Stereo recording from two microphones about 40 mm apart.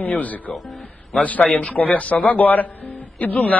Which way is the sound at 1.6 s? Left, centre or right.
Left.